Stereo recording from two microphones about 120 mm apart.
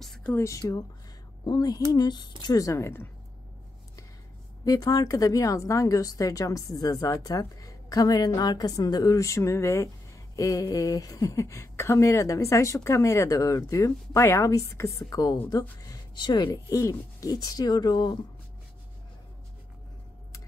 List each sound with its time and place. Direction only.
0.2 s speech: 15° left (ahead or behind)
0.5 s speech: 30° left (ahead or behind)
4.6 s speech: 30° left (ahead or behind)